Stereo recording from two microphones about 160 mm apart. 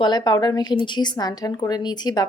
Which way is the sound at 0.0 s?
25° left (ahead or behind).